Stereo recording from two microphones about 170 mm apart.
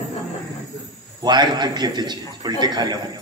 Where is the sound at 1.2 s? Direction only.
25° right (ahead or behind).